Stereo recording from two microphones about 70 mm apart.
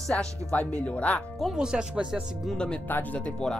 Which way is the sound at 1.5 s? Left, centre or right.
Centre.